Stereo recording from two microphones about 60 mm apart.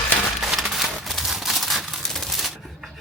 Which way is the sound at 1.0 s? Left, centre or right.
Centre.